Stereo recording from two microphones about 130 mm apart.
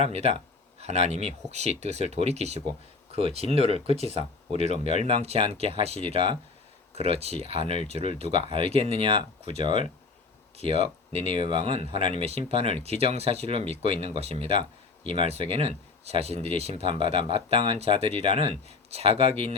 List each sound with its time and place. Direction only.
0.0 s speech: 55° right (ahead or behind)